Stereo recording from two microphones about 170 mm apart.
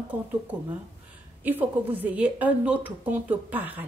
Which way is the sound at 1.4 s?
10° right (ahead or behind).